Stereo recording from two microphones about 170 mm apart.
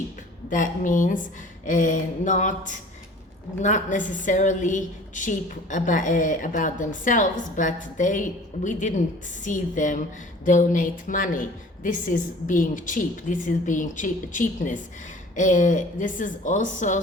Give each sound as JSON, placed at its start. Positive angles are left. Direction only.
{"t": 0.5, "sound": "a woman's voice", "side_deg": 50}
{"t": 9.4, "sound": "a woman's voice", "side_deg": 50}